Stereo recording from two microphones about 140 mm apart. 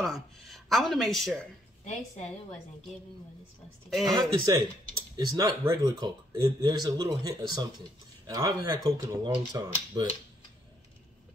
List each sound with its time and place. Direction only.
0.0 s speech: centre (ahead or behind)
1.9 s a woman's voice: 50° left (ahead or behind)
4.1 s speech: 25° right (ahead or behind)